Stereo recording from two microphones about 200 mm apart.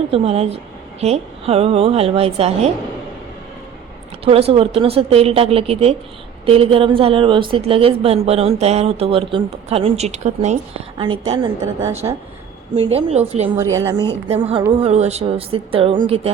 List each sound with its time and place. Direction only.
0.1 s a woman's voice: 30° right (ahead or behind)
4.3 s a woman's voice: 30° right (ahead or behind)
12.7 s speech: 30° right (ahead or behind)
13.6 s a woman's voice: 15° right (ahead or behind)
14.8 s a woman's voice: 30° right (ahead or behind)